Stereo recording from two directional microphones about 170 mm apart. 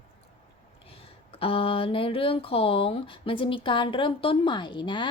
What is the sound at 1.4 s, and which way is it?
Speech, 35° left (ahead or behind).